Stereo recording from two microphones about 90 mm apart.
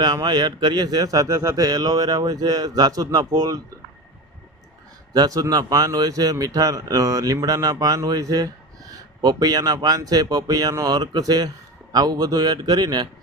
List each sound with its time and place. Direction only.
0.0 s speech: 50° right (ahead or behind)
5.1 s speech: 45° right (ahead or behind)